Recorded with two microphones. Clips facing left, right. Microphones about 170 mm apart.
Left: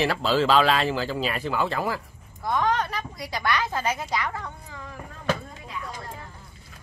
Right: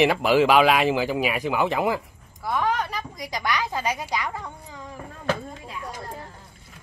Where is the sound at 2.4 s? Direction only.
5° right (ahead or behind).